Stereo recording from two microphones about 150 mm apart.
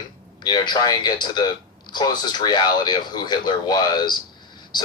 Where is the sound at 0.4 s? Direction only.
30° left (ahead or behind).